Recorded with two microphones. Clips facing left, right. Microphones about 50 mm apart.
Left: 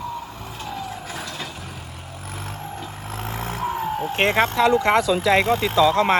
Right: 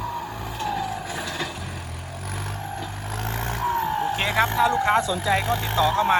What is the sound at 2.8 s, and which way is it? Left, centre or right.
Vehicle, centre.